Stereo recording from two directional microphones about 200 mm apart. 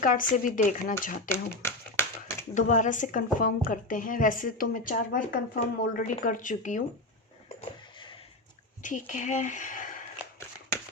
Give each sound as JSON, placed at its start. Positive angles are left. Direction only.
{"t": 0.0, "sound": "a woman's voice", "side_deg": 40}
{"t": 1.3, "sound": "a sound", "side_deg": 10}
{"t": 2.6, "sound": "a woman's voice", "side_deg": 40}
{"t": 8.8, "sound": "speech", "side_deg": 40}